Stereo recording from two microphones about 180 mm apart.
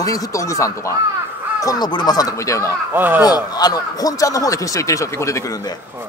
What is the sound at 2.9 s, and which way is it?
Speech, 10° right (ahead or behind).